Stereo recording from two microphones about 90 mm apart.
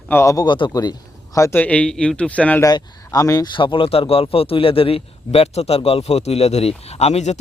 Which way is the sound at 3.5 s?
65° left (ahead or behind).